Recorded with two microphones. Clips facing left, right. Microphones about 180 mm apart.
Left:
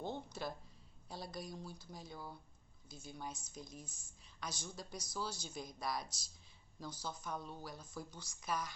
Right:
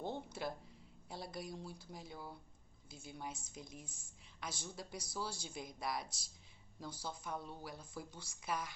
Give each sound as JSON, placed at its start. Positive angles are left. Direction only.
{"t": 0.0, "sound": "a sound", "side_deg": -25}
{"t": 1.1, "sound": "speech", "side_deg": -25}
{"t": 3.7, "sound": "speech", "side_deg": 20}
{"t": 4.4, "sound": "speech", "side_deg": -25}